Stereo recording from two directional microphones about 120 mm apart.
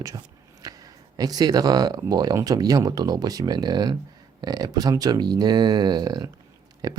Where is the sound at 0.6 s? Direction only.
30° right (ahead or behind).